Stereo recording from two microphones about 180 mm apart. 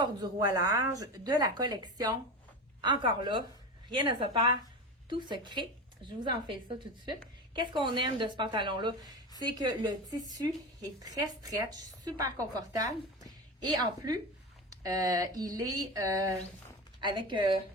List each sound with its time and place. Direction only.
0.0 s speech: 20° right (ahead or behind)